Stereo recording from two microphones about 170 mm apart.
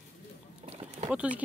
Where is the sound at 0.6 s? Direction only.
35° right (ahead or behind).